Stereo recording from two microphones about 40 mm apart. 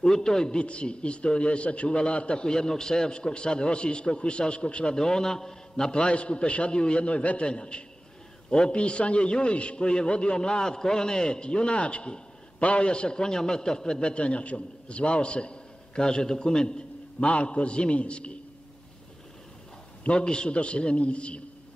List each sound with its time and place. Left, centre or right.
0.0 s a man's voice: centre
4.9 s a man's voice: centre
5.9 s a man's voice: left
20.0 s a man's voice: left